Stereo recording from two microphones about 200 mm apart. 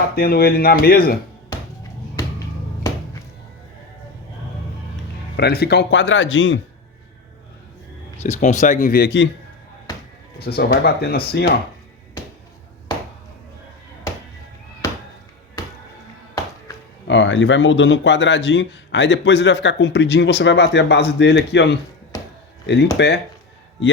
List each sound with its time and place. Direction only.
0.2 s speech: 50° left (ahead or behind)
5.4 s speech: 55° left (ahead or behind); by 6.6 s 70° left (ahead or behind)
8.2 s speech: 35° left (ahead or behind); by 9.3 s 60° left (ahead or behind)
10.4 s speech: 50° left (ahead or behind)
17.1 s a man's voice: 65° left (ahead or behind)